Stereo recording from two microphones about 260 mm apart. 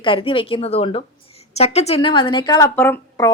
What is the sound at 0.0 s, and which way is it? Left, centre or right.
A woman's voice, centre.